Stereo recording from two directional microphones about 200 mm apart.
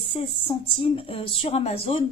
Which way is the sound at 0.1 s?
25° left (ahead or behind).